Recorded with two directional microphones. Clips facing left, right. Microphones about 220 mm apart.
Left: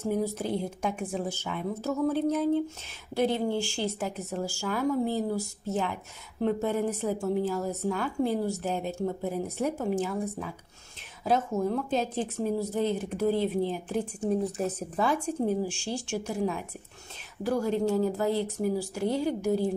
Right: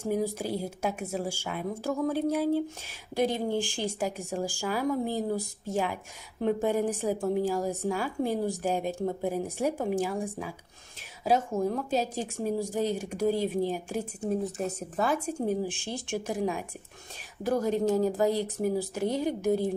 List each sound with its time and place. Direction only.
0.0 s a woman's voice: 10° right (ahead or behind)
11.9 s a woman's voice: 10° right (ahead or behind)